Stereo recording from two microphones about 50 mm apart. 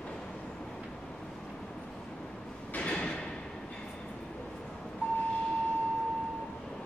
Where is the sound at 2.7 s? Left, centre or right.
Left.